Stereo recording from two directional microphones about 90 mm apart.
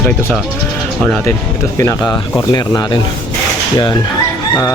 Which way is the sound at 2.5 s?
50° left (ahead or behind).